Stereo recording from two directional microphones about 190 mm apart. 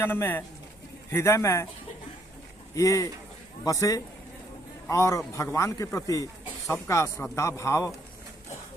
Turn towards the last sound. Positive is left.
turn(degrees=15)  # may be behind; listen again after turning